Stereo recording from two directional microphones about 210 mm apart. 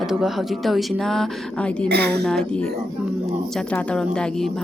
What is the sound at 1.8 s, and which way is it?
Speech, 50° right (ahead or behind).